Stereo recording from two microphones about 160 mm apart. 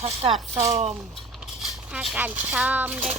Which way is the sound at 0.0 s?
40° right (ahead or behind).